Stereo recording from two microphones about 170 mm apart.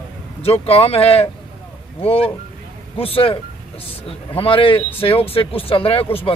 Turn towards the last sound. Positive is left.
turn(degrees=35)  # may be behind; listen again after turning